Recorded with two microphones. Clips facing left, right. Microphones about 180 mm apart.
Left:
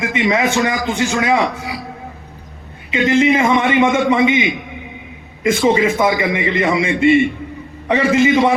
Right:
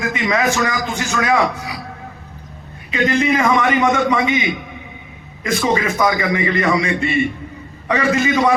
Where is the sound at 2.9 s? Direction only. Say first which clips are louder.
Left 3 dB; 25° left (ahead or behind).